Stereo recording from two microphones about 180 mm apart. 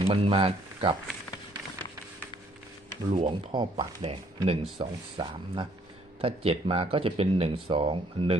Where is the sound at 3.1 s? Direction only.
30° right (ahead or behind).